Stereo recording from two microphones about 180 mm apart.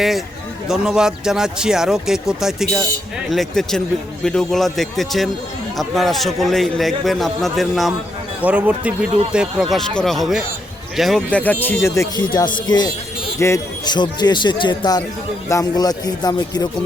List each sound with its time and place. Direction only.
0.7 s a man's voice: 5° right (ahead or behind); by 16.6 s 20° left (ahead or behind)